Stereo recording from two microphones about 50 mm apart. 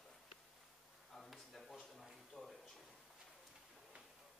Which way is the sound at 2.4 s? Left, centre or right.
Centre.